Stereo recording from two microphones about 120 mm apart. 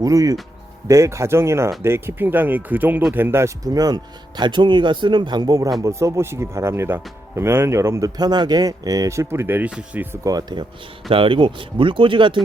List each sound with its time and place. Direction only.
0.0 s speech: 30° right (ahead or behind); by 10.2 s 15° right (ahead or behind)
10.2 s speech: 35° right (ahead or behind)
11.1 s speech: 50° right (ahead or behind)